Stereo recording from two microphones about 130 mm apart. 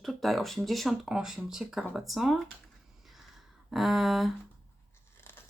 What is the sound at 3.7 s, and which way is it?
Speech, centre (ahead or behind).